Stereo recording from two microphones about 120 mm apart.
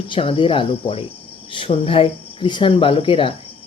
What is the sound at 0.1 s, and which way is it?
Speech, 50° left (ahead or behind).